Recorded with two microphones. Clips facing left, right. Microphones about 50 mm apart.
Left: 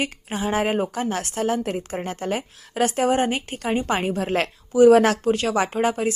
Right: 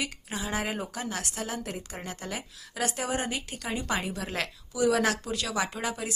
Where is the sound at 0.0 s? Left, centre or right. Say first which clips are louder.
Left 8 dB; left.